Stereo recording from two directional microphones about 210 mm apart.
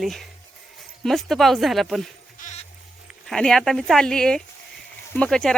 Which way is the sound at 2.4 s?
35° left (ahead or behind).